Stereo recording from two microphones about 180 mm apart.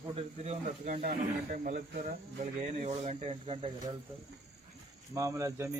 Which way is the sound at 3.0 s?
35° right (ahead or behind).